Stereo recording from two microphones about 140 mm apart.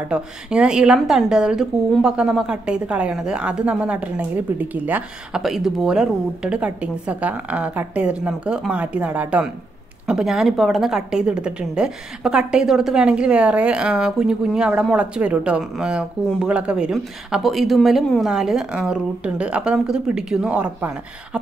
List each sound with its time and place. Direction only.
0.1 s a woman's voice: 5° right (ahead or behind)